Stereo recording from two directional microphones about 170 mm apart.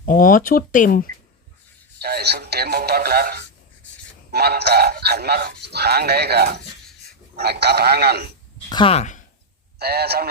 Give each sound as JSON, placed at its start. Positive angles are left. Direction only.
{"t": 0.0, "sound": "speech", "side_deg": 55}
{"t": 2.0, "sound": "speech", "side_deg": -70}
{"t": 8.7, "sound": "speech", "side_deg": 30}
{"t": 9.7, "sound": "speech", "side_deg": -70}